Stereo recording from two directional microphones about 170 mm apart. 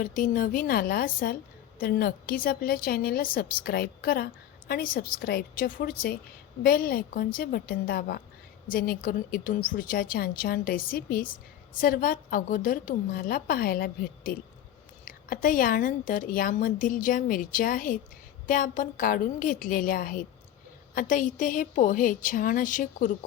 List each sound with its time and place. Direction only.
0.0 s a woman's voice: 55° left (ahead or behind)